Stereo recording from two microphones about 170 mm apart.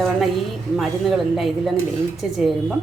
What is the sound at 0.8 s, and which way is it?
Dishes, centre (ahead or behind).